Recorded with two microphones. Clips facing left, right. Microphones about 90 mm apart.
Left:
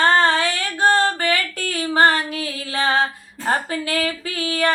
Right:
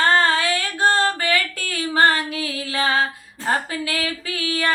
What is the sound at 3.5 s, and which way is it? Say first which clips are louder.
Speech: left 1 dB; 30° left (ahead or behind).